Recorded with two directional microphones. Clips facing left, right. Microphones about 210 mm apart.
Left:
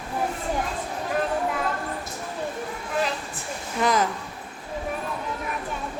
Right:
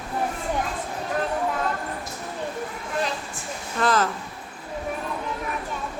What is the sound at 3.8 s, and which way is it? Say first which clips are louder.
Speech: even; 15° left (ahead or behind).